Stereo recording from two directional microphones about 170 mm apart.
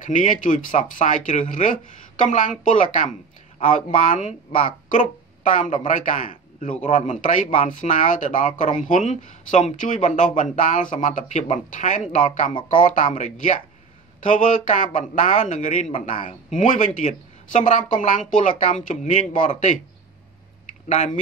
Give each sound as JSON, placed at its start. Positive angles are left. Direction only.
{"t": 0.0, "sound": "speech", "side_deg": 50}